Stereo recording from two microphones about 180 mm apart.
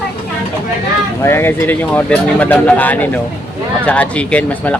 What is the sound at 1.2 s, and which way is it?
Speech, 15° left (ahead or behind).